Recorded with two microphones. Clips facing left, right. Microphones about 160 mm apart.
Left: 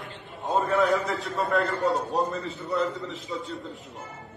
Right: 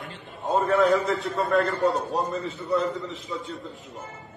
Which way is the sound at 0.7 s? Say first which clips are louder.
Right 4 dB; 20° right (ahead or behind).